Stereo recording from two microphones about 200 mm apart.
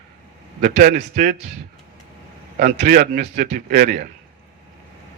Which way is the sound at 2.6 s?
45° right (ahead or behind).